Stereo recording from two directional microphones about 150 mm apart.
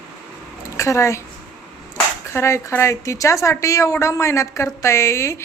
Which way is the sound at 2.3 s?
20° left (ahead or behind).